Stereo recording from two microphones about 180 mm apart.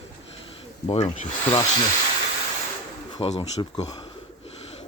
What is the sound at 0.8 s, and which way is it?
Speech, 35° left (ahead or behind).